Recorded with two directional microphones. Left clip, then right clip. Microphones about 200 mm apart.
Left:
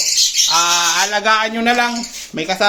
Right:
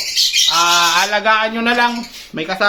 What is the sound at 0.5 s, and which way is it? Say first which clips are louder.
Bird: right 2 dB; 20° left (ahead or behind).